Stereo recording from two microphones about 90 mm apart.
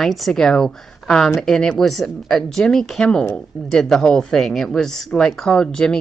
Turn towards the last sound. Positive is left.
turn(degrees=10)  # may be behind; listen again after turning